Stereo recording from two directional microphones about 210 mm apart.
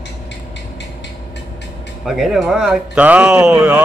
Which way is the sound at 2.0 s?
Centre (ahead or behind).